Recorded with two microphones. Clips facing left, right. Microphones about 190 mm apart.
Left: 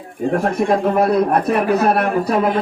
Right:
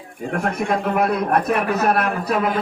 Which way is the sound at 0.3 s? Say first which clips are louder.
Left 5 dB; 35° left (ahead or behind).